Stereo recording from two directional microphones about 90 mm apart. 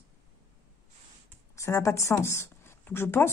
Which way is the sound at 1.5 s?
35° left (ahead or behind).